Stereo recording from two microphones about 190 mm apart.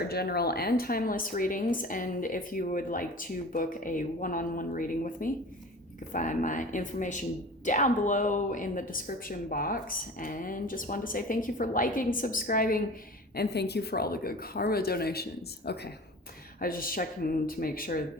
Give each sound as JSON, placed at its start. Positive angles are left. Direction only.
{"t": 0.1, "sound": "speech", "side_deg": 55}
{"t": 13.3, "sound": "a woman's voice", "side_deg": 60}